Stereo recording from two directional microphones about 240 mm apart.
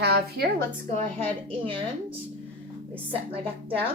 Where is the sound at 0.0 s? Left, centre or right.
Right.